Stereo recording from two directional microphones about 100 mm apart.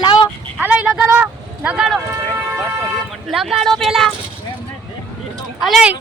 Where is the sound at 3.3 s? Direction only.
5° right (ahead or behind).